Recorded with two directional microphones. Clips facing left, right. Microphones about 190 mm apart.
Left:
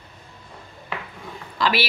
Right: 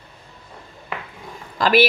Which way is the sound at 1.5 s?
45° right (ahead or behind).